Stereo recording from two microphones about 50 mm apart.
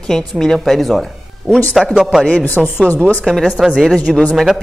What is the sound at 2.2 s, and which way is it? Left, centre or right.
Speech, left.